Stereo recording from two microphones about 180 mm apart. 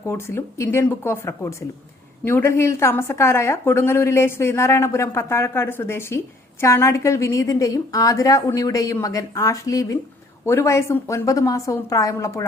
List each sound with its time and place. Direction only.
0.1 s a woman's voice: 15° left (ahead or behind)